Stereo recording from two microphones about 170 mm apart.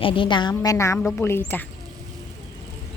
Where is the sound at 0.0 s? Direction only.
30° left (ahead or behind).